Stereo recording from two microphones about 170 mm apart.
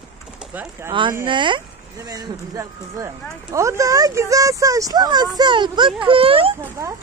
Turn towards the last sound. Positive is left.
turn(degrees=-20)  # may be behind; listen again after turning